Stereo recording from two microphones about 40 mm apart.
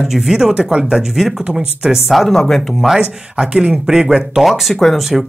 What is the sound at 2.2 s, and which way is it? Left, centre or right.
Speech, centre.